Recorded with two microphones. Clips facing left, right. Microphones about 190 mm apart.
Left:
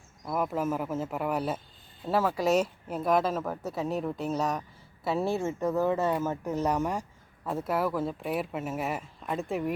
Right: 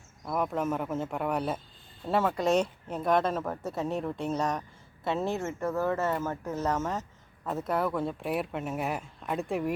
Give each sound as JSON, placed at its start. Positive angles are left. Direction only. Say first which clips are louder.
{"t": 0.3, "sound": "speech", "louder": "even", "side_deg": 5}